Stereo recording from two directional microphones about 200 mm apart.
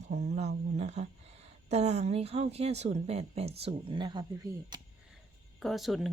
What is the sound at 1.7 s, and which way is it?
Speech, 35° right (ahead or behind).